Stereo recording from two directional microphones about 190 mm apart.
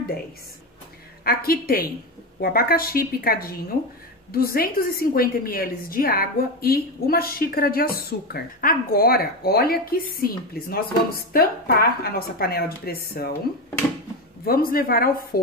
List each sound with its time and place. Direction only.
1.2 s a woman's voice: 50° left (ahead or behind)
14.4 s a woman's voice: 50° left (ahead or behind)